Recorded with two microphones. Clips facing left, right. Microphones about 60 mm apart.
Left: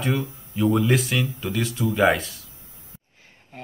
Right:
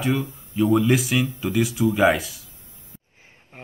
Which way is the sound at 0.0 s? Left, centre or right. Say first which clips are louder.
Right 2 dB; centre.